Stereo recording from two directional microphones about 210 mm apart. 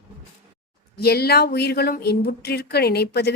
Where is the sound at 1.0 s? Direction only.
50° left (ahead or behind).